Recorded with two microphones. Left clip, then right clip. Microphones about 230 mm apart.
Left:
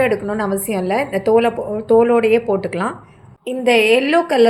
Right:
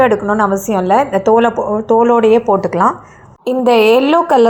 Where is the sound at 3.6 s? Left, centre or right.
Right.